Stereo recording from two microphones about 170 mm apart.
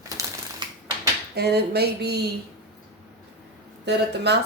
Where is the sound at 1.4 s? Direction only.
70° right (ahead or behind).